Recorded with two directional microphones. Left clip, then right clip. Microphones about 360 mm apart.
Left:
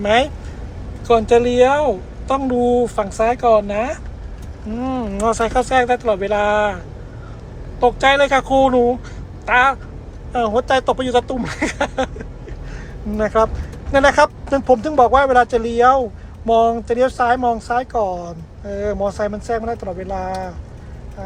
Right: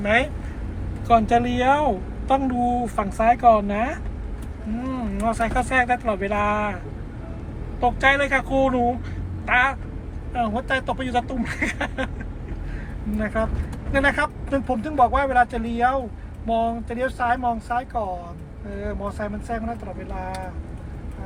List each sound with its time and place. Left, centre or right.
0.0 s speech: centre
7.8 s speech: centre
13.1 s speech: centre